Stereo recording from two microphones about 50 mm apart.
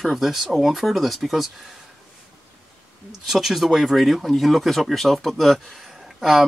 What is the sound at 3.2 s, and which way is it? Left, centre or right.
Speech, centre.